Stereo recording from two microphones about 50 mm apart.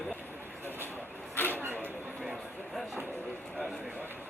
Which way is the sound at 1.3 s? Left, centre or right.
Left.